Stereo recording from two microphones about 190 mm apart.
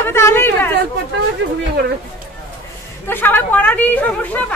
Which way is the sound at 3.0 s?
10° left (ahead or behind).